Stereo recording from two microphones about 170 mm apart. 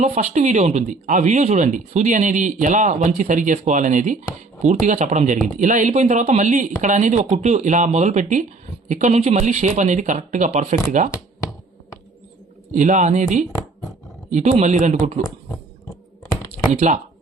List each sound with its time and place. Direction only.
0.0 s speech: 40° right (ahead or behind)
12.7 s speech: 45° right (ahead or behind)
16.3 s computer keyboard: 20° left (ahead or behind)
16.7 s speech: 45° right (ahead or behind)